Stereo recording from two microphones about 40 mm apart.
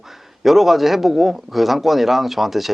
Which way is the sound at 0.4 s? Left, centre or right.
Centre.